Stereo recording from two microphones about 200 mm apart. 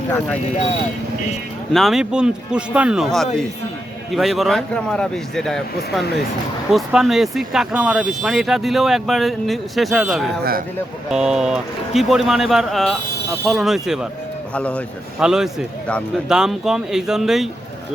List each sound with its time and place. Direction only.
1.7 s speech: centre (ahead or behind)